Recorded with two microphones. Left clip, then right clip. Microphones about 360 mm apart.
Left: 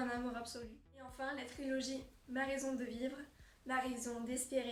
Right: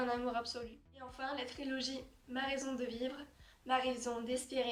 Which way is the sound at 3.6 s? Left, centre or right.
Centre.